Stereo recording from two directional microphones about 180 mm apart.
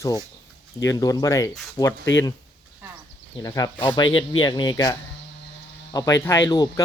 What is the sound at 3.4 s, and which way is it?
Speech, 20° left (ahead or behind).